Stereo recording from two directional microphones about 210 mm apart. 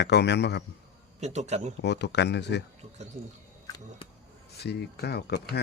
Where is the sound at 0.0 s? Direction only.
55° left (ahead or behind).